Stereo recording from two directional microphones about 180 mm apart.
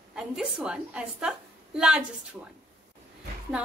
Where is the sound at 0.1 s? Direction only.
5° right (ahead or behind).